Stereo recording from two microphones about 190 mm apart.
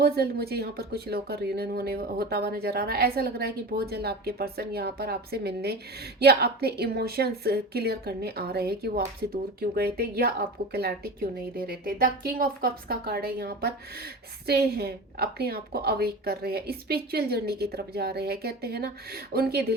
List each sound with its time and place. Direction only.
0.0 s a woman's voice: 55° right (ahead or behind)